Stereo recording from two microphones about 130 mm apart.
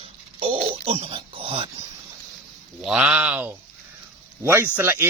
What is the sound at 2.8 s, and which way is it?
Speech, 10° right (ahead or behind).